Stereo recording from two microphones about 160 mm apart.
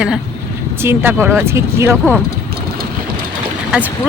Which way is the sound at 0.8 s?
15° right (ahead or behind).